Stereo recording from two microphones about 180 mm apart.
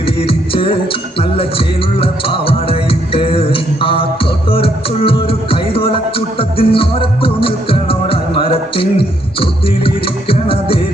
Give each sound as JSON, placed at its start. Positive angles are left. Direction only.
{"t": 0.0, "sound": "music", "side_deg": 30}